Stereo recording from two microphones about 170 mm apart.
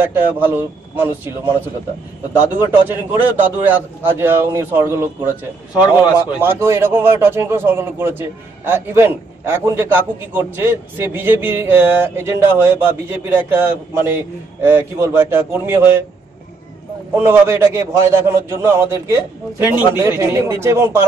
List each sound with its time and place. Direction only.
0.0 s a man's voice: 10° right (ahead or behind)
2.3 s a man's voice: 15° right (ahead or behind)
17.1 s a man's voice: 15° right (ahead or behind)